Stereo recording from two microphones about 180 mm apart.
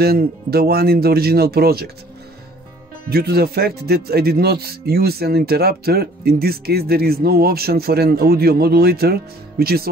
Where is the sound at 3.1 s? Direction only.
60° right (ahead or behind).